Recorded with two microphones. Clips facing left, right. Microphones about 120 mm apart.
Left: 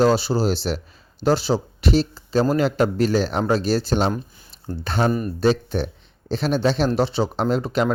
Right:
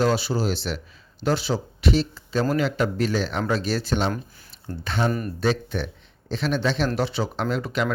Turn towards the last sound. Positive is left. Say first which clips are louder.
# left 4 dB
turn(degrees=35)  # may be behind; listen again after turning